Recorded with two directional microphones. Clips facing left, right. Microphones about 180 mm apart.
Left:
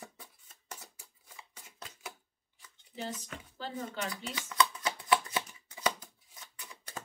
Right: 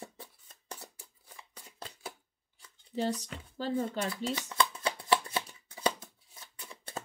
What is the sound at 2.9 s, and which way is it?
Speech, 40° right (ahead or behind).